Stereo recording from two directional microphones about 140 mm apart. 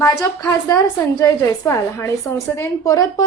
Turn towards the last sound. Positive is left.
turn(degrees=25)  # may be behind; listen again after turning